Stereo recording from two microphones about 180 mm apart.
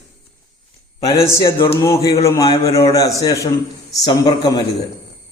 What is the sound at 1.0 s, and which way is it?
A man's voice, 15° left (ahead or behind).